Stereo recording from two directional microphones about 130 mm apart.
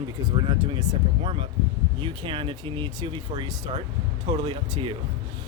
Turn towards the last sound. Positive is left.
turn(degrees=-40)  # may be behind; listen again after turning